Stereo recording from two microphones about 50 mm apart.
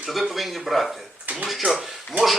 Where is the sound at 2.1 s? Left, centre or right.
Right.